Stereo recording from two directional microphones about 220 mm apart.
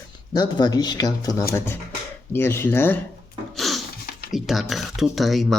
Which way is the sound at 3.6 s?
Centre (ahead or behind).